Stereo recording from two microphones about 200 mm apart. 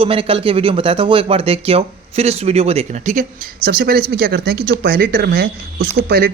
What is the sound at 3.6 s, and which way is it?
Speech, 50° right (ahead or behind).